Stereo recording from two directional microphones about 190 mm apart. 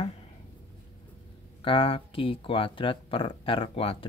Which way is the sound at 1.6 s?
30° left (ahead or behind).